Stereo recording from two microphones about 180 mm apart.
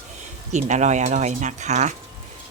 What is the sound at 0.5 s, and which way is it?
Speech, 40° right (ahead or behind).